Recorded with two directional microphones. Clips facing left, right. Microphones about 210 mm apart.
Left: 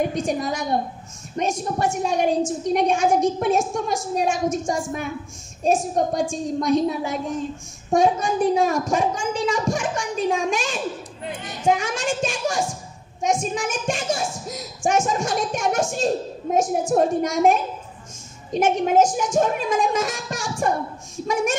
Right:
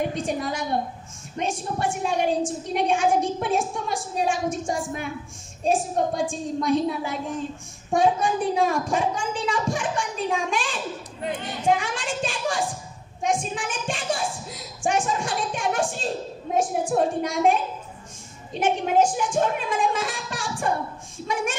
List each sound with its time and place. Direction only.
0.2 s a woman's voice: 45° left (ahead or behind)
11.8 s a woman's voice: 45° left (ahead or behind)